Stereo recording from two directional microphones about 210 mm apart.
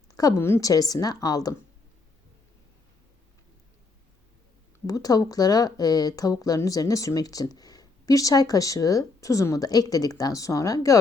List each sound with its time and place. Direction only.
0.1 s speech: 15° left (ahead or behind)
4.9 s speech: 15° left (ahead or behind)